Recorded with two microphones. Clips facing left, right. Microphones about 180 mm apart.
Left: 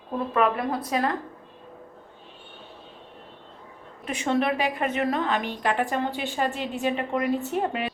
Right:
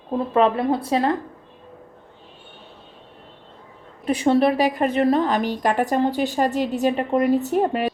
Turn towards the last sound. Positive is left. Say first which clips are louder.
# right 6 dB
turn(degrees=-40)  # may be behind; listen again after turning